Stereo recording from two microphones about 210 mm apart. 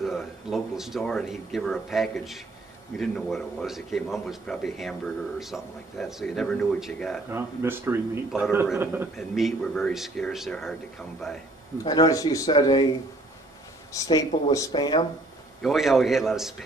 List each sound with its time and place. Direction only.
0.0 s a man's voice: centre (ahead or behind)
7.2 s speech: 10° right (ahead or behind)
9.1 s a man's voice: centre (ahead or behind)
11.8 s speech: 20° left (ahead or behind)
14.0 s speech: 15° left (ahead or behind)
15.6 s a man's voice: centre (ahead or behind)